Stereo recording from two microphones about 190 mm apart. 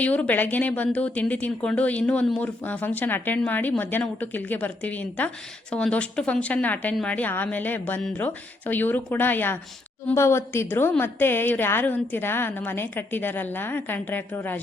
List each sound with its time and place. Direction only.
0.0 s speech: 10° left (ahead or behind)